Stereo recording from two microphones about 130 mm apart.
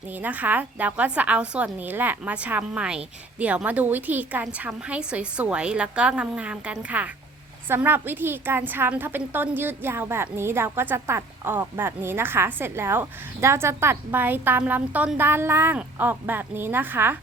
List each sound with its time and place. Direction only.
0.2 s a woman's voice: 10° right (ahead or behind)